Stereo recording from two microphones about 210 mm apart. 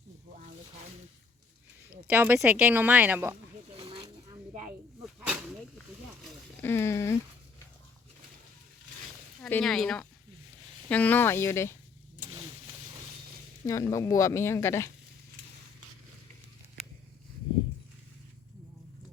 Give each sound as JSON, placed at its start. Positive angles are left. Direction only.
{"t": 2.0, "sound": "speech", "side_deg": -10}
{"t": 3.8, "sound": "snake", "side_deg": -25}
{"t": 5.0, "sound": "snake", "side_deg": -5}
{"t": 6.6, "sound": "speech", "side_deg": 10}
{"t": 9.4, "sound": "speech", "side_deg": 5}
{"t": 13.7, "sound": "speech", "side_deg": 15}